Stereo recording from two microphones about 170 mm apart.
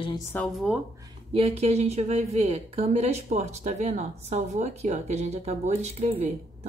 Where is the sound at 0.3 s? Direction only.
10° left (ahead or behind).